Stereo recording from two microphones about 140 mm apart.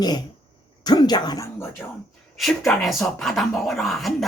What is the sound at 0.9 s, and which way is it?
Speech, 30° left (ahead or behind).